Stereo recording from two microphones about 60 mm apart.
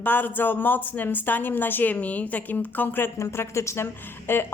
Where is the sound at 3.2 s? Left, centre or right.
Left.